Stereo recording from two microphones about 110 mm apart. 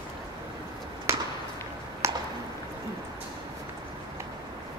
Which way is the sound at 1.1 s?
25° right (ahead or behind).